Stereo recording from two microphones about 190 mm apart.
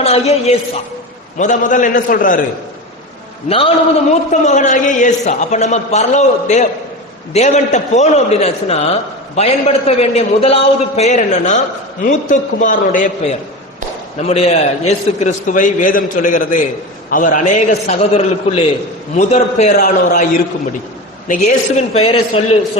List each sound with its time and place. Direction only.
0.0 s a man's voice: 35° left (ahead or behind)
4.3 s a man's voice: 40° left (ahead or behind)
21.2 s a man's voice: 40° left (ahead or behind)